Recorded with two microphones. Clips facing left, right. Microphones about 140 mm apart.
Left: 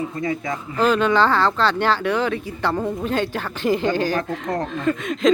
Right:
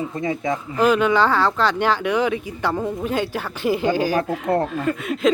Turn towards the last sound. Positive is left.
turn(degrees=-5)  # may be behind; listen again after turning